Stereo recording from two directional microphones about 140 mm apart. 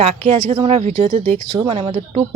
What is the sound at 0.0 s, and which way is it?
Speech, 45° right (ahead or behind).